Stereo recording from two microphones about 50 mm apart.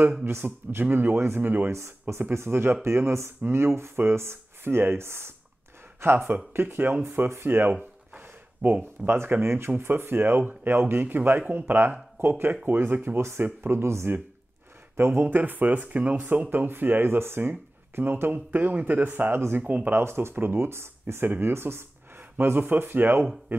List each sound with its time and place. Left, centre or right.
0.2 s speech: right
1.7 s speech: right
8.2 s a sound: right
8.8 s speech: right
15.2 s speech: right
19.9 s speech: right